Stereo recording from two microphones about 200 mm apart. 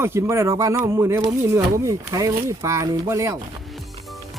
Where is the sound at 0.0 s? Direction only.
15° right (ahead or behind).